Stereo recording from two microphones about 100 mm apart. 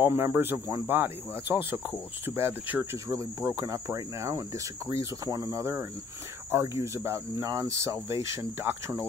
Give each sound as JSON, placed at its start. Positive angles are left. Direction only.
{"t": 0.0, "sound": "cricket", "side_deg": -25}